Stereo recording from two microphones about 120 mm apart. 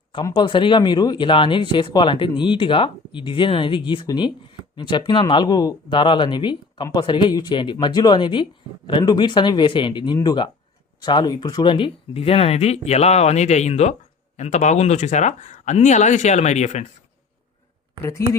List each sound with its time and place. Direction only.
0.3 s speech: 45° left (ahead or behind); by 16.8 s 75° left (ahead or behind)
18.0 s speech: 20° left (ahead or behind)